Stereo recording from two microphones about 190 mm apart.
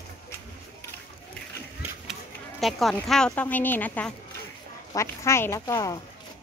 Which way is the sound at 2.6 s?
Centre (ahead or behind).